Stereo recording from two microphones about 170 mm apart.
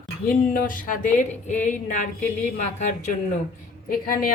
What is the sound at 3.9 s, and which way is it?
Speech, 55° left (ahead or behind).